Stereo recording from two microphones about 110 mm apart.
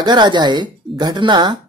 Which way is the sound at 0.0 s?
40° right (ahead or behind).